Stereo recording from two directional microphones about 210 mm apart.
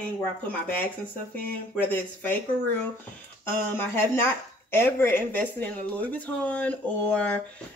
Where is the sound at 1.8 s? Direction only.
10° left (ahead or behind).